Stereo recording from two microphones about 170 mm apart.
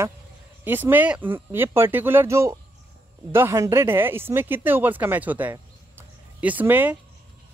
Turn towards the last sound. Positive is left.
turn(degrees=-10)  # may be behind; listen again after turning